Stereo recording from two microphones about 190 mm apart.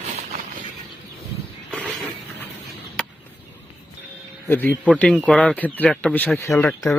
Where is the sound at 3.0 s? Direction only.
5° left (ahead or behind).